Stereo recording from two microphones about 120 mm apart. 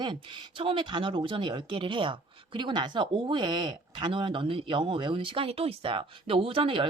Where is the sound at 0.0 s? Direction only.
40° right (ahead or behind).